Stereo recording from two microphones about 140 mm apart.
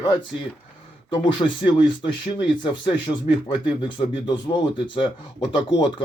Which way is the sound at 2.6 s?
35° left (ahead or behind).